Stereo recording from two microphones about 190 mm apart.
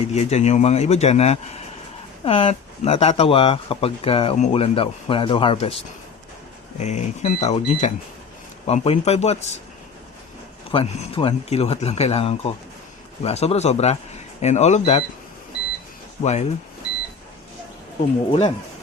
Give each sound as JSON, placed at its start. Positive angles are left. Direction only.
{"t": 0.1, "sound": "speech", "side_deg": 35}
{"t": 6.7, "sound": "speech", "side_deg": 35}
{"t": 10.7, "sound": "speech", "side_deg": 30}
{"t": 16.2, "sound": "speech", "side_deg": 35}
{"t": 18.3, "sound": "speech", "side_deg": 30}